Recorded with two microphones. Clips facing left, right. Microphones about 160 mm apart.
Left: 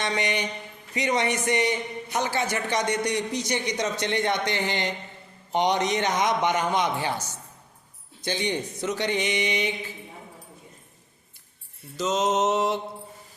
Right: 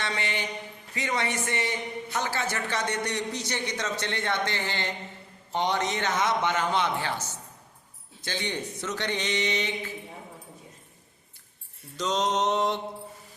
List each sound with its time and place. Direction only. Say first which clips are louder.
0.0 s a man's voice: left 5 dB; 20° left (ahead or behind)
8.2 s a man's voice: left 5 dB; 15° left (ahead or behind)
11.9 s mantra: left 3 dB; 5° left (ahead or behind)